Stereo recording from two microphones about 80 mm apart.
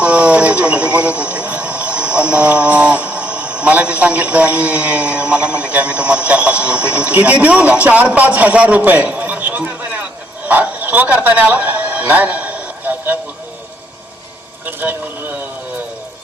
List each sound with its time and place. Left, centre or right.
0.0 s speech: centre
14.6 s a man's voice: right